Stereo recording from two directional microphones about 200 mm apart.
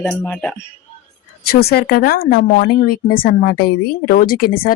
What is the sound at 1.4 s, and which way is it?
Speech, 50° left (ahead or behind).